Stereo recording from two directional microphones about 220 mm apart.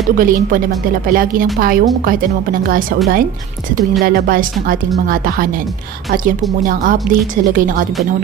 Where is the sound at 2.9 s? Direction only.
40° right (ahead or behind).